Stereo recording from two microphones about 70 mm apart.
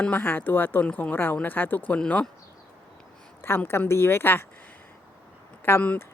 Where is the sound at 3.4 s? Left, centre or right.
Left.